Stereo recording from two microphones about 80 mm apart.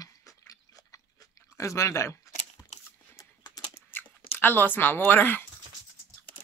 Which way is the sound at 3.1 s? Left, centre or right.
Left.